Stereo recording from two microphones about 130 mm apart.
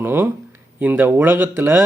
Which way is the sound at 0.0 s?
15° right (ahead or behind).